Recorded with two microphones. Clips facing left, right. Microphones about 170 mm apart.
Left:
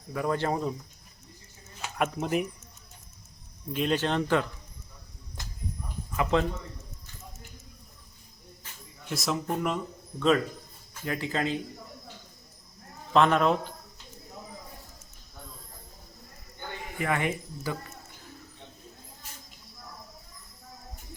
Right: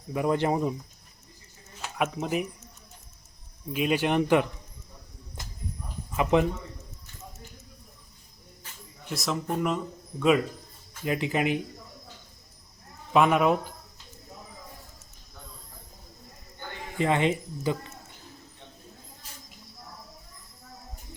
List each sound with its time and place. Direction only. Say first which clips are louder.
0.1 s speech: right 3 dB; 20° right (ahead or behind)
1.8 s speech: even; centre (ahead or behind)
3.7 s speech: right 2 dB; 10° right (ahead or behind)
6.3 s speech: right 3 dB; 15° right (ahead or behind)
9.0 s speech: even; centre (ahead or behind); by 11.6 s 15° right (ahead or behind)
13.1 s speech: right 1 dB; 10° right (ahead or behind)
17.0 s speech: right 5 dB; 25° right (ahead or behind)